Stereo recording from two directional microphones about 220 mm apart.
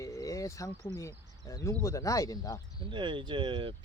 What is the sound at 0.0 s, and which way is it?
Speech, 15° left (ahead or behind).